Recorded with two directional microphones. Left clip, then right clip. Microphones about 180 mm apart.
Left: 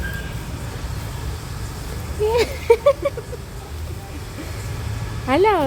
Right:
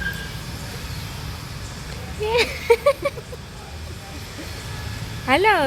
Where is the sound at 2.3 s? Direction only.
25° left (ahead or behind).